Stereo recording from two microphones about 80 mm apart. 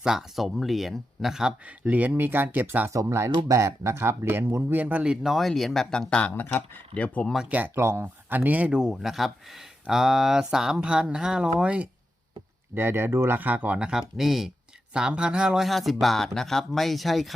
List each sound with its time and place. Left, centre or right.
0.0 s speech: centre
1.8 s speech: centre
2.9 s speech: right; by 6.1 s centre
6.1 s speech: centre
7.3 s speech: centre
7.8 s speech: right
8.0 s speech: right
8.8 s speech: centre
12.7 s speech: right; by 17.3 s centre